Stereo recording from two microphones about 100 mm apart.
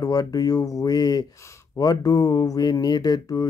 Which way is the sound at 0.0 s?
40° left (ahead or behind).